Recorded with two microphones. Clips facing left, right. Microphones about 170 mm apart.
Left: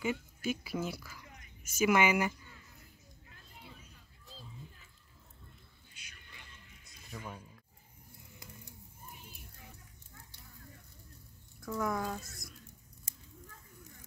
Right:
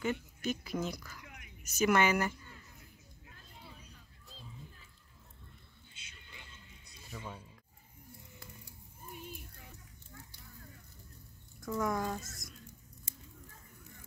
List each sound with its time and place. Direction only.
0.0 s a woman's voice: 10° left (ahead or behind)
5.9 s a sound: 25° right (ahead or behind)
11.6 s speech: centre (ahead or behind)